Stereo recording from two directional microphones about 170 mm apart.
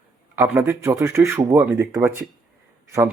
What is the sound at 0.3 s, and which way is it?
Speech, 15° right (ahead or behind).